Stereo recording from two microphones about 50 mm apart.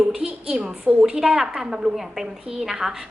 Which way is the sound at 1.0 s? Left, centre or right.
Centre.